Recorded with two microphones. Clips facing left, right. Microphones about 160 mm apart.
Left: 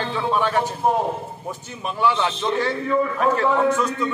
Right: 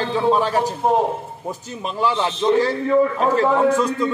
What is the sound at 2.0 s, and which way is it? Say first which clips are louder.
A man's voice: right 1 dB; 35° right (ahead or behind).